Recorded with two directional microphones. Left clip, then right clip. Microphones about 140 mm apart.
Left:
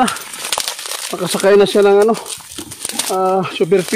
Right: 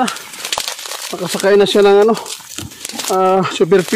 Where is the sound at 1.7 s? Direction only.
15° right (ahead or behind).